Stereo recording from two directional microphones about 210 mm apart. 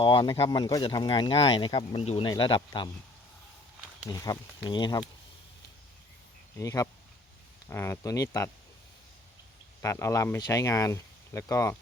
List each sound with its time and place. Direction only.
0.0 s speech: 25° left (ahead or behind)
4.1 s speech: 15° left (ahead or behind)
6.6 s speech: 15° left (ahead or behind)
9.8 s speech: 15° left (ahead or behind)